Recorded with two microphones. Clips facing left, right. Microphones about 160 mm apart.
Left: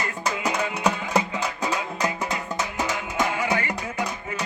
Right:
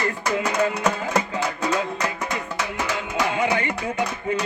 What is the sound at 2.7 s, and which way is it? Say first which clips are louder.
Music: right 1 dB; 20° left (ahead or behind).